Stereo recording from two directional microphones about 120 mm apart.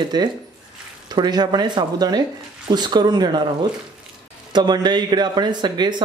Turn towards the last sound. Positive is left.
turn(degrees=-40)  # may be behind; listen again after turning